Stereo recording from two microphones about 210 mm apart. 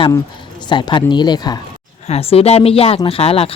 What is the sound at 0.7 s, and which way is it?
A man's voice, 20° left (ahead or behind).